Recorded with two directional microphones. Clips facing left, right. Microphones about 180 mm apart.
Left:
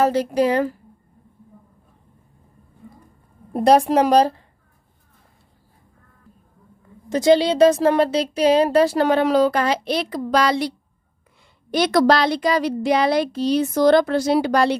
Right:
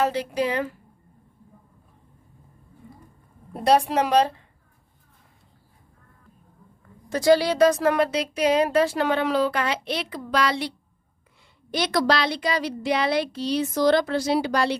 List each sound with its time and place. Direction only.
0.0 s speech: 40° left (ahead or behind)
3.5 s a child's voice: 45° left (ahead or behind)
7.1 s speech: 20° left (ahead or behind); by 10.7 s 40° left (ahead or behind)
11.7 s a child's voice: 50° left (ahead or behind)